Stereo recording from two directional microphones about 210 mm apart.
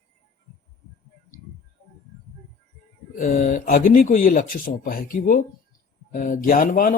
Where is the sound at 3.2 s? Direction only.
40° left (ahead or behind).